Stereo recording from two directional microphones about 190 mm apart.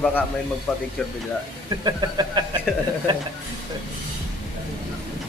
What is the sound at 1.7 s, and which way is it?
Speech, 20° right (ahead or behind).